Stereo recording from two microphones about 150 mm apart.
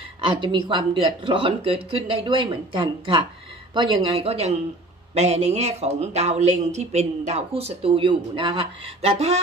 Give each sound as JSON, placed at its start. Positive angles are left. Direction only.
{"t": 0.4, "sound": "speech", "side_deg": -30}
{"t": 9.0, "sound": "speech", "side_deg": -45}